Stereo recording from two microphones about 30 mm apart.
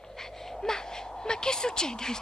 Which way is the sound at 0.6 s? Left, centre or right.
Left.